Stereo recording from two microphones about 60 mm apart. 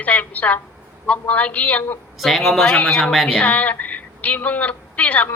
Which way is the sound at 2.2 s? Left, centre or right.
Centre.